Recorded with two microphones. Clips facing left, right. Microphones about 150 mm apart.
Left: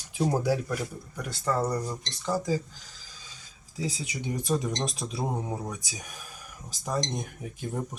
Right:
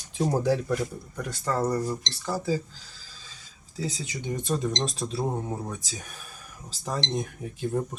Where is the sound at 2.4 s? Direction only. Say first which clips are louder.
Right 1 dB; 15° left (ahead or behind).